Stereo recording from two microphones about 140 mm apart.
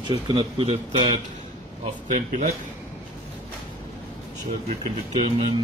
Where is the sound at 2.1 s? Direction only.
65° right (ahead or behind).